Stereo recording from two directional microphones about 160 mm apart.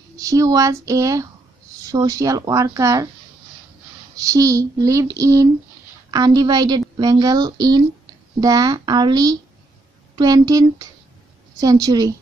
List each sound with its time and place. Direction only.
0.2 s speech: 20° right (ahead or behind)
4.3 s speech: 20° right (ahead or behind)